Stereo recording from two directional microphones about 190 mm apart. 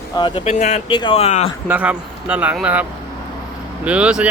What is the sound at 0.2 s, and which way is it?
Speech, 25° left (ahead or behind).